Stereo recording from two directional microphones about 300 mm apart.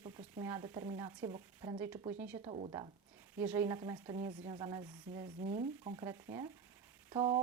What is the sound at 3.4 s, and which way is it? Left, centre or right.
Speech, centre.